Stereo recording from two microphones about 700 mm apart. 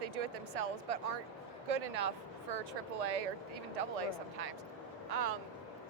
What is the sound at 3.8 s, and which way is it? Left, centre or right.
Speech, right.